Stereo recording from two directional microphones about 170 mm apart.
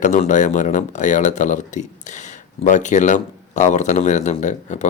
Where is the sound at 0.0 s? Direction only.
45° left (ahead or behind).